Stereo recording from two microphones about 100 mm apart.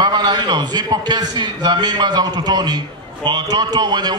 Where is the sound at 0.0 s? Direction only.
45° right (ahead or behind).